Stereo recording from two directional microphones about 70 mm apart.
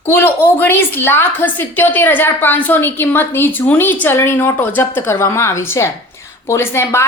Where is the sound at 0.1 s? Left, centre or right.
Left.